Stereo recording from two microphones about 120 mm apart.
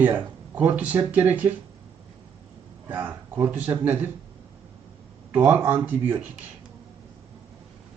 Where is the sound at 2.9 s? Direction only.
15° right (ahead or behind).